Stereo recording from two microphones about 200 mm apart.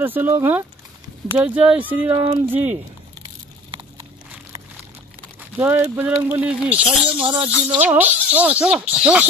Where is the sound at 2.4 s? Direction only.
10° right (ahead or behind).